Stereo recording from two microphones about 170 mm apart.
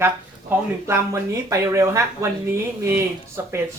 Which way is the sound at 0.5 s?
10° right (ahead or behind).